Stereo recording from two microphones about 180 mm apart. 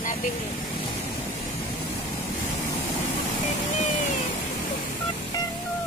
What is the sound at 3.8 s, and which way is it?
Vehicle, 45° left (ahead or behind).